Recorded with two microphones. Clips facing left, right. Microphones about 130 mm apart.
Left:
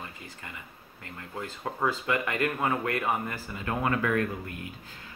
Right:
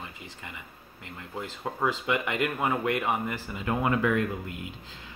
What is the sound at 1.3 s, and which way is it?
Speech, 20° right (ahead or behind).